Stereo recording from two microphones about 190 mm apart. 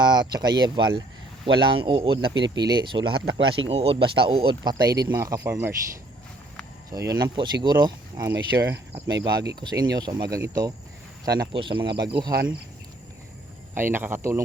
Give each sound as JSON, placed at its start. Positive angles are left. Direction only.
{"t": 0.0, "sound": "speech", "side_deg": -20}
{"t": 6.9, "sound": "speech", "side_deg": -20}
{"t": 13.7, "sound": "speech", "side_deg": -10}